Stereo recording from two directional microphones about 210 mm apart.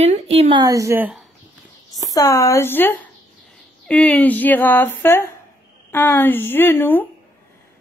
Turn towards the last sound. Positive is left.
turn(degrees=10)  # may be behind; listen again after turning